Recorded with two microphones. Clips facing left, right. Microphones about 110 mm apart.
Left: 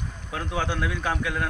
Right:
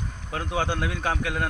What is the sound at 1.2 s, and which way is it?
Speech, 60° right (ahead or behind).